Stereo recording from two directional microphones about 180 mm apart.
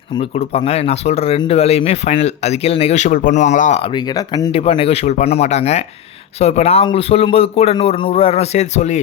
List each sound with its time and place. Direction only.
0.1 s speech: 30° left (ahead or behind)